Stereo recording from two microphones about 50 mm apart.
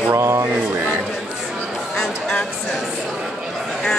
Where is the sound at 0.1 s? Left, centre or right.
Right.